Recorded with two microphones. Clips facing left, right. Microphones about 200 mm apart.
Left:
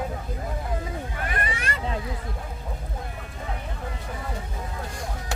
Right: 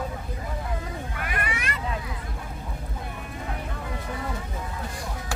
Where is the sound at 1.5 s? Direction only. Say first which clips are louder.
Left 1 dB; 30° left (ahead or behind).